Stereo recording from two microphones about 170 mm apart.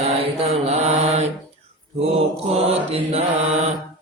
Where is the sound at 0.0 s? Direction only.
35° right (ahead or behind).